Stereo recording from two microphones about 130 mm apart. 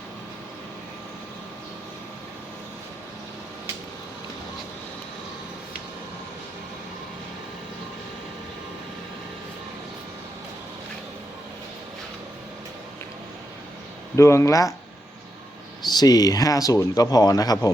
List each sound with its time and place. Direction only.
14.2 s speech: 20° left (ahead or behind)
15.9 s speech: 30° left (ahead or behind)